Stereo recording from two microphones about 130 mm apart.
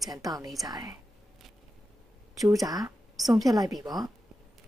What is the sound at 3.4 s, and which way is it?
Speech, 30° right (ahead or behind).